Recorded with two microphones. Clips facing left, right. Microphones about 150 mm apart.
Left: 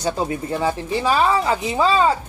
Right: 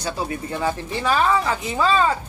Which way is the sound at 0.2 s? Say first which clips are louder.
Left 3 dB; 25° left (ahead or behind).